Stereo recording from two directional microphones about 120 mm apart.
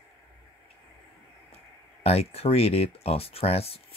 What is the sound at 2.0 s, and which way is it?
Speech, 55° left (ahead or behind).